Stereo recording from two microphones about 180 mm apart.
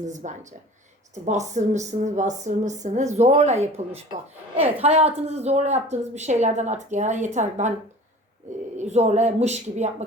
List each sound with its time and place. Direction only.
0.0 s speech: 40° right (ahead or behind)
8.8 s speech: 40° right (ahead or behind)